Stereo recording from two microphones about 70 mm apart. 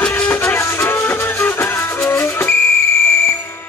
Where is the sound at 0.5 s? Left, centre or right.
Left.